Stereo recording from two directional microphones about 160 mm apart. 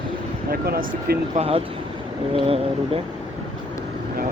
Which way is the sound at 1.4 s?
35° right (ahead or behind).